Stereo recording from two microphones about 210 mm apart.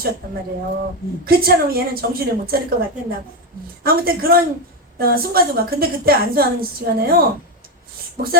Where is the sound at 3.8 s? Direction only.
45° right (ahead or behind).